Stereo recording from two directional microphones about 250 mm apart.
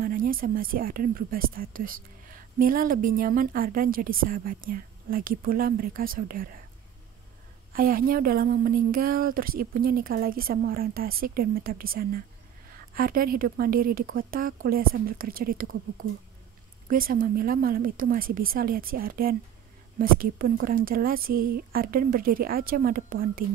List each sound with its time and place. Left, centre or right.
0.0 s speech: right
7.7 s speech: right